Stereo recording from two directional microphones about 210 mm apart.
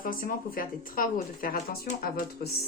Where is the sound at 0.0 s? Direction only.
40° left (ahead or behind).